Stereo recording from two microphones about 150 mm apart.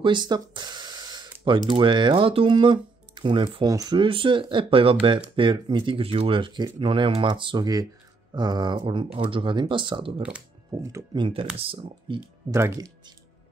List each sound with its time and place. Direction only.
0.0 s a sound: 30° right (ahead or behind)
1.7 s speech: 30° right (ahead or behind)
10.7 s speech: 20° right (ahead or behind)
11.1 s speech: 35° right (ahead or behind)
12.4 s speech: 20° right (ahead or behind)